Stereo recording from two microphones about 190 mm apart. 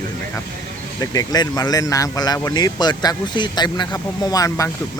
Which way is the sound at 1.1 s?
20° left (ahead or behind).